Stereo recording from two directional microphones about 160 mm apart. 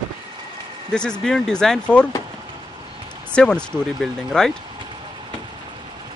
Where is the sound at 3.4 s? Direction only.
5° left (ahead or behind).